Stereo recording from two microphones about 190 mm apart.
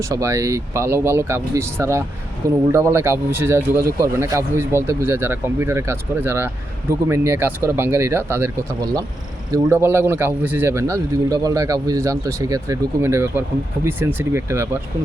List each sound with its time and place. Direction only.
0.0 s a man's voice: 15° right (ahead or behind)